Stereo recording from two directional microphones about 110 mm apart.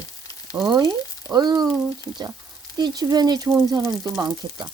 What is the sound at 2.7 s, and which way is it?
Speech, 35° right (ahead or behind).